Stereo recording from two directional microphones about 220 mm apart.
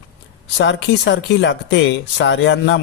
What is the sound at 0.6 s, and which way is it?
Speech, 55° left (ahead or behind).